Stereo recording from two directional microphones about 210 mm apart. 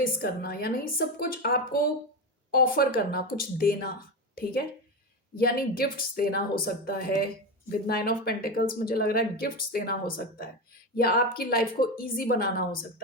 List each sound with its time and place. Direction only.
0.0 s speech: 45° left (ahead or behind)
5.4 s speech: 45° left (ahead or behind)